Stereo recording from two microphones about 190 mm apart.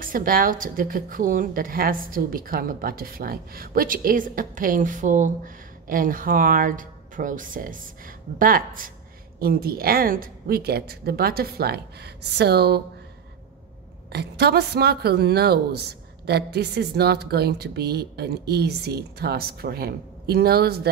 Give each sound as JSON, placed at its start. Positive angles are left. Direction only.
{"t": 0.0, "sound": "a woman's voice", "side_deg": -45}
{"t": 14.1, "sound": "a woman's voice", "side_deg": -60}